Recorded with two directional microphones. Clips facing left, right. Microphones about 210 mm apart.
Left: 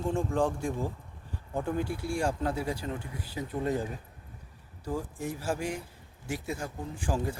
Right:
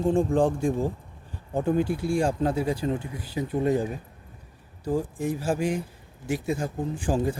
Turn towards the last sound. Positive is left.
turn(degrees=-20)  # may be behind; listen again after turning